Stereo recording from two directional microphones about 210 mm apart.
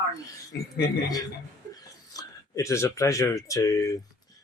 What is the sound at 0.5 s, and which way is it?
Speech, 55° left (ahead or behind).